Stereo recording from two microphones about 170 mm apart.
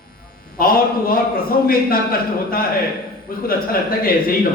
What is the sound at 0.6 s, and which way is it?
A man's voice, 60° left (ahead or behind).